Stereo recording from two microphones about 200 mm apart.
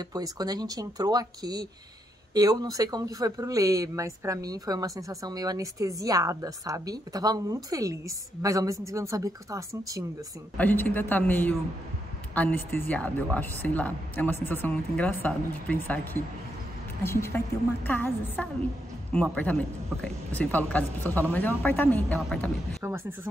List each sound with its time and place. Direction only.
0.0 s speech: 20° right (ahead or behind)
10.6 s a woman's voice: 10° left (ahead or behind)
22.8 s speech: 10° right (ahead or behind)